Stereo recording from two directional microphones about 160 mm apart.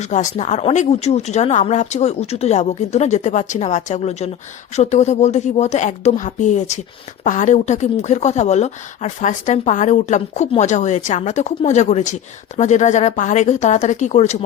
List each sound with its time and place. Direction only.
0.0 s speech: 50° left (ahead or behind)